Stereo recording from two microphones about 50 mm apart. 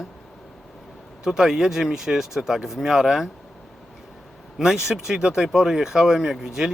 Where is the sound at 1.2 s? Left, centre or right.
Centre.